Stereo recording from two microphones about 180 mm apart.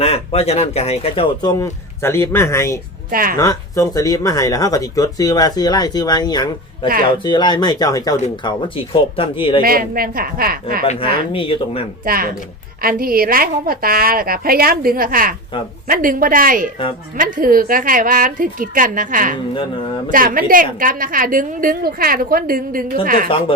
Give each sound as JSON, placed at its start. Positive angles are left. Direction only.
{"t": 0.0, "sound": "speech", "side_deg": 35}
{"t": 3.1, "sound": "a woman's voice", "side_deg": -50}
{"t": 3.3, "sound": "speech", "side_deg": 20}
{"t": 9.6, "sound": "a woman's voice", "side_deg": -55}
{"t": 10.8, "sound": "speech", "side_deg": 30}
{"t": 12.0, "sound": "a woman's voice", "side_deg": -55}